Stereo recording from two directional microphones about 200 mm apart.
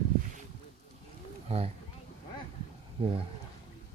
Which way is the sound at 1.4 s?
30° right (ahead or behind).